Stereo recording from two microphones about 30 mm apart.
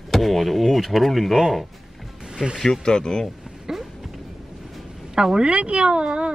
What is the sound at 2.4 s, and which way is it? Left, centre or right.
Speech, right.